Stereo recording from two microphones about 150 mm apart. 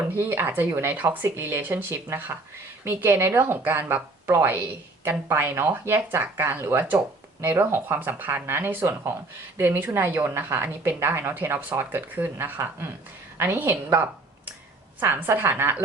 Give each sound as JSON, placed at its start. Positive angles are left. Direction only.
{"t": 0.0, "sound": "a woman's voice", "side_deg": -15}